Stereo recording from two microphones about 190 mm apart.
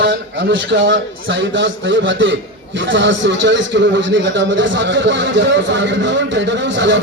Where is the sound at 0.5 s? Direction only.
80° right.